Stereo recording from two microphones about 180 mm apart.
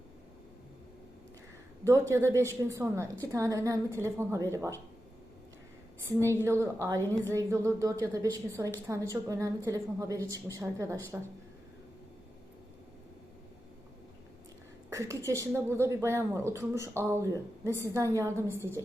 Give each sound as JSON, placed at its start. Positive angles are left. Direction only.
{"t": 1.8, "sound": "a woman's voice", "side_deg": -15}
{"t": 6.1, "sound": "a woman's voice", "side_deg": -15}
{"t": 14.8, "sound": "a woman's voice", "side_deg": -15}